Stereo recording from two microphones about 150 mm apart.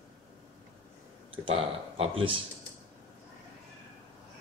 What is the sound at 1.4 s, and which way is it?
Speech, 40° right (ahead or behind).